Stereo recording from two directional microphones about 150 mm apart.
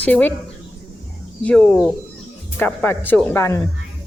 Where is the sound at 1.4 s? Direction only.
5° left (ahead or behind).